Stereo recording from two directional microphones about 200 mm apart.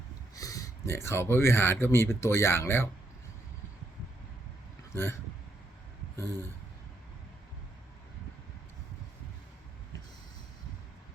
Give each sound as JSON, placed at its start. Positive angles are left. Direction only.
{"t": 0.3, "sound": "speech", "side_deg": 15}
{"t": 6.1, "sound": "speech", "side_deg": -20}